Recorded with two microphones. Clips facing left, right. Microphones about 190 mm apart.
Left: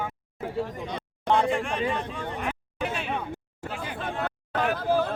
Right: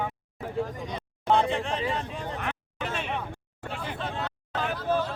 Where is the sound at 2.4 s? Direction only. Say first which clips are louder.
Left 3 dB; 10° left (ahead or behind).